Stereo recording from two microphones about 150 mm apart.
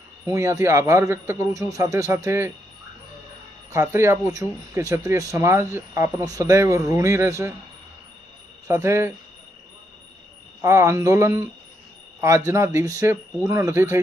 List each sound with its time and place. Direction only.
0.3 s speech: 20° right (ahead or behind)
3.7 s speech: 20° right (ahead or behind)
8.6 s speech: 15° right (ahead or behind)
10.6 s speech: 20° right (ahead or behind)
12.5 s speech: 20° right (ahead or behind)